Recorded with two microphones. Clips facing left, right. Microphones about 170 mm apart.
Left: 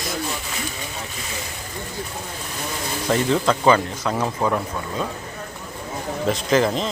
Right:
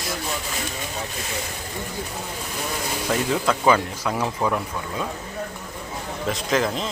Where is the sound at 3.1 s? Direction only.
5° right (ahead or behind).